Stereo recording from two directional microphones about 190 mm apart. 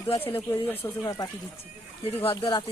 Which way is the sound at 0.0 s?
15° left (ahead or behind).